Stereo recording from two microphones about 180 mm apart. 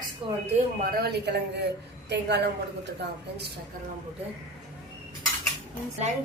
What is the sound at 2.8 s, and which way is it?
Speech, 70° right (ahead or behind).